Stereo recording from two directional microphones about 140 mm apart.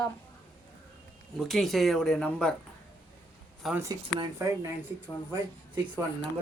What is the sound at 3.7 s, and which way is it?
Speech, 20° right (ahead or behind).